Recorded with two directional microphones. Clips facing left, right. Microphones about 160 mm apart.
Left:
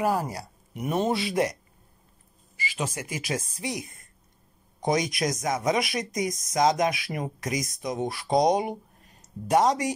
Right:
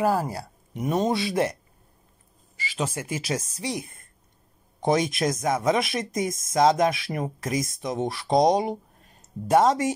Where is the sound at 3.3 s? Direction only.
25° right (ahead or behind).